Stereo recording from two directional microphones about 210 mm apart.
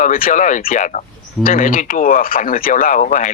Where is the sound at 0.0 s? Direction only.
40° left (ahead or behind).